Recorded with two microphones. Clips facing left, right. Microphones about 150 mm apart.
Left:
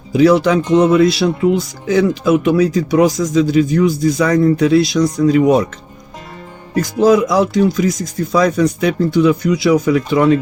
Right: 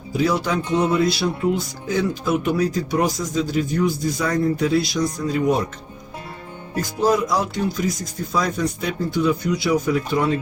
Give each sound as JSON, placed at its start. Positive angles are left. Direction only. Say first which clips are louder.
{"t": 0.1, "sound": "speech", "louder": "left 10 dB", "side_deg": 80}
{"t": 6.7, "sound": "speech", "louder": "left 8 dB", "side_deg": 90}